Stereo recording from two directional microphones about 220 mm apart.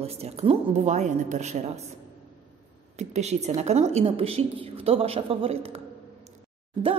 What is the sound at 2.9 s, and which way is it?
Speech, 30° right (ahead or behind).